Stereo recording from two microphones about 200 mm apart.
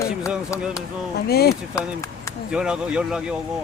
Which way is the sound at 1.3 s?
50° left (ahead or behind).